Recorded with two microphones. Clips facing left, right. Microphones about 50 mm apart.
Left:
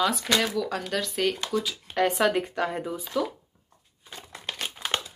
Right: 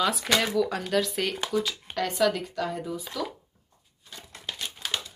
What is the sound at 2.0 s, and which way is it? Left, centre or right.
Speech, left.